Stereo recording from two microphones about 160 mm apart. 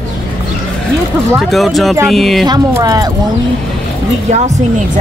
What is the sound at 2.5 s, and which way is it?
Speech, 25° right (ahead or behind).